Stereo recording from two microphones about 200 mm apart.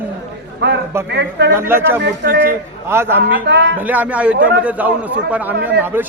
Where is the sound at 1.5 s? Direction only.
10° right (ahead or behind).